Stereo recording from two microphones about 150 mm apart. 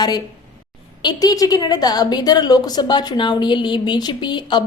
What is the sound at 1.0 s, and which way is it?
A woman's voice, 25° left (ahead or behind).